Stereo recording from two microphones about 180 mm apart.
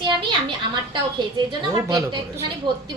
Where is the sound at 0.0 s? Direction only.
25° right (ahead or behind).